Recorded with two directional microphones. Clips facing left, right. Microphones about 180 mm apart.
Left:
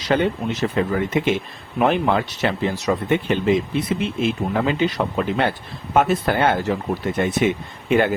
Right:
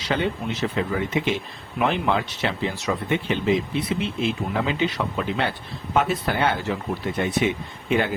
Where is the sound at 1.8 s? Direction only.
50° left (ahead or behind).